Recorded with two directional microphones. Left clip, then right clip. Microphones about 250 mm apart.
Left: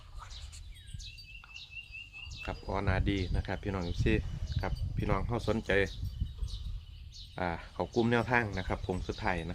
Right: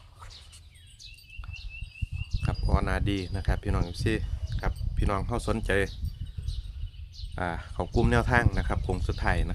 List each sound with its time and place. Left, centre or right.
2.3 s speech: right
7.3 s speech: right